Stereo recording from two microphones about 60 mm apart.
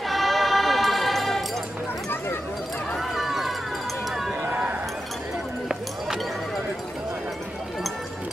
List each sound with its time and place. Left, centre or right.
0.1 s music: centre
3.0 s run: centre
4.4 s a sound: right